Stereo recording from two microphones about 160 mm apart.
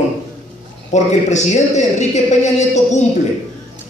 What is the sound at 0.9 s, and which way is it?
A man's voice, 45° left (ahead or behind).